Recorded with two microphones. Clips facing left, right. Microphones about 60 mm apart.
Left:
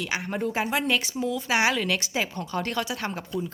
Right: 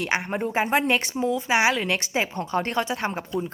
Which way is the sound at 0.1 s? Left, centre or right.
Right.